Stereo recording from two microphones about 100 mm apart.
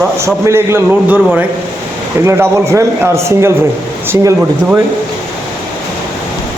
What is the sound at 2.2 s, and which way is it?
A man's voice, 25° right (ahead or behind).